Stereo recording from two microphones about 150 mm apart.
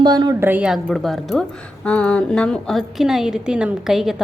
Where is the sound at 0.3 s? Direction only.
15° right (ahead or behind).